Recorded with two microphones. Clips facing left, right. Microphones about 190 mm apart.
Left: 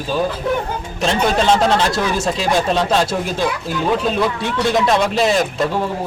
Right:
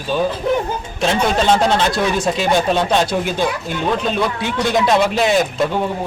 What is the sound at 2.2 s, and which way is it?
Speech, centre (ahead or behind).